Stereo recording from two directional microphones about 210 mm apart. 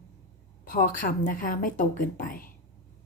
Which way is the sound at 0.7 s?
40° left (ahead or behind).